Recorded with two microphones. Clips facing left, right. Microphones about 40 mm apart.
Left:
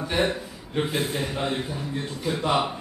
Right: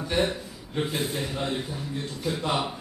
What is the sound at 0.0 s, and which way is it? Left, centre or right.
A man's voice, centre.